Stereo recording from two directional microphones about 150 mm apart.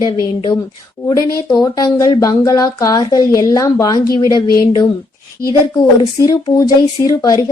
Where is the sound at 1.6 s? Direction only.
25° left (ahead or behind).